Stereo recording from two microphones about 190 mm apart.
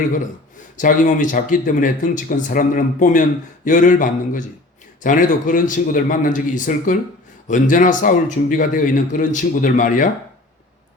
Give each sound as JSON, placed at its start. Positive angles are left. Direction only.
{"t": 0.8, "sound": "speech", "side_deg": 40}